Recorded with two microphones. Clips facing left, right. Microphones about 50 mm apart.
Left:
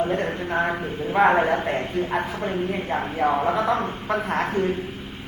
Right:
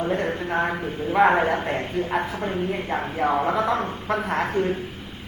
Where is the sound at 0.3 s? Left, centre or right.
Right.